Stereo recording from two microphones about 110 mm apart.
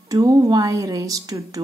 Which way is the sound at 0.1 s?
30° right (ahead or behind).